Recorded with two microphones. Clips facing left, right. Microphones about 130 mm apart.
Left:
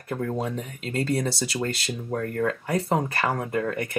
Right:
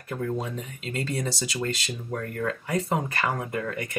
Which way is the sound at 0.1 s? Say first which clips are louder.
Left 2 dB; 45° left (ahead or behind).